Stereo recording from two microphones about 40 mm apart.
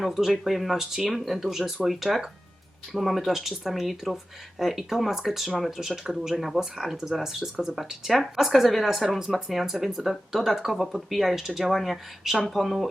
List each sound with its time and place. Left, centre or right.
0.0 s speech: centre
9.0 s speech: centre